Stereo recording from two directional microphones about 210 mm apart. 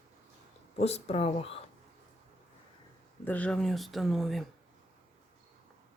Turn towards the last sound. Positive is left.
turn(degrees=0)  # may be behind; listen again after turning